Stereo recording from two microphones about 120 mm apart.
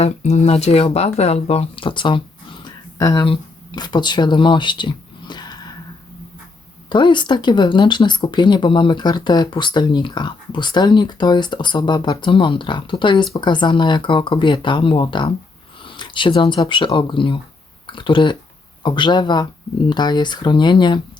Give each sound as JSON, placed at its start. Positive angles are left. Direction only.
{"t": 0.0, "sound": "speech", "side_deg": 65}
{"t": 3.0, "sound": "speech", "side_deg": 30}
{"t": 6.9, "sound": "speech", "side_deg": 40}
{"t": 15.8, "sound": "a sound", "side_deg": 45}
{"t": 16.6, "sound": "speech", "side_deg": 45}